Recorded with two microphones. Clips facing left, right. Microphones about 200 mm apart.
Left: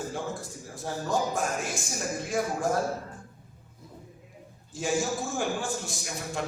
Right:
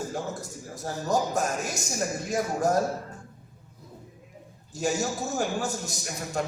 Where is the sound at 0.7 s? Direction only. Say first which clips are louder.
Right 2 dB; 40° right (ahead or behind).